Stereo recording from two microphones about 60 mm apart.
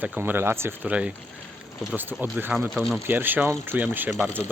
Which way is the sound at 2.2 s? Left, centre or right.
Right.